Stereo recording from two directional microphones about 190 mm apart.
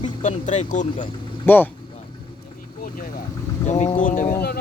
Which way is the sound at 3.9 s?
45° left (ahead or behind).